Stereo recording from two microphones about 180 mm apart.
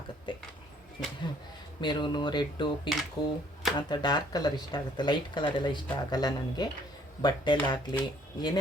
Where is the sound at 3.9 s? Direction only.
25° left (ahead or behind).